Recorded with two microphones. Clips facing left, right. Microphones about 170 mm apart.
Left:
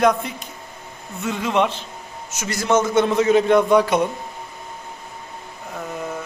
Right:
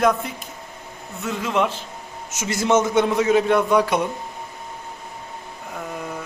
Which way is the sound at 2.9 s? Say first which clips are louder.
Left 2 dB; 10° right (ahead or behind).